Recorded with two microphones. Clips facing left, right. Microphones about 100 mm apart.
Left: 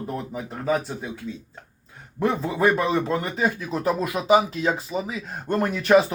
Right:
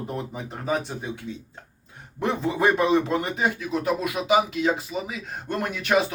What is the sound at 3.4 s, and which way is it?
Speech, 35° left (ahead or behind).